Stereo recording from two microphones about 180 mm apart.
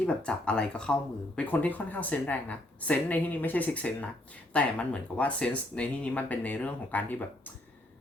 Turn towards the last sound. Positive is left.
turn(degrees=10)  # may be behind; listen again after turning